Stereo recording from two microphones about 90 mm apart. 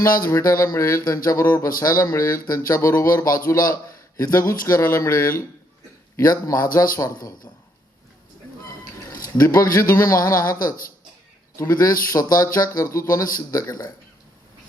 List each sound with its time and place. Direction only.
0.0 s speech: 40° left (ahead or behind)
9.3 s speech: 45° left (ahead or behind)